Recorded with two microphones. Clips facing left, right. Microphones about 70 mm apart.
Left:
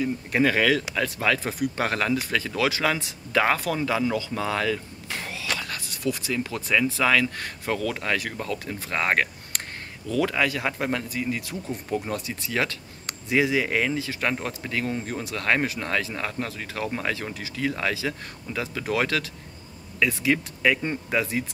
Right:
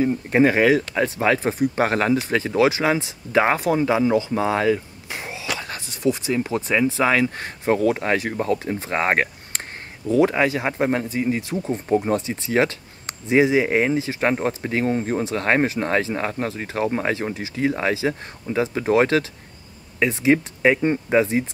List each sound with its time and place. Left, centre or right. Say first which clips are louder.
0.0 s speech: right 6 dB; right